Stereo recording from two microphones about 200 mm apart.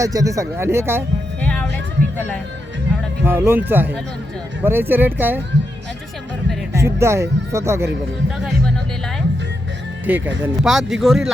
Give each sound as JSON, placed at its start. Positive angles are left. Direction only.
{"t": 0.0, "sound": "speech", "side_deg": -15}
{"t": 1.4, "sound": "music", "side_deg": 5}
{"t": 3.2, "sound": "speech", "side_deg": -10}
{"t": 6.7, "sound": "speech", "side_deg": -15}
{"t": 8.4, "sound": "speech", "side_deg": 0}
{"t": 10.1, "sound": "speech", "side_deg": -10}